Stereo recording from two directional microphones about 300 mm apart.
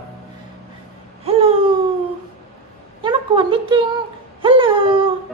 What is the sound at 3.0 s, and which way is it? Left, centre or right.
Speech, centre.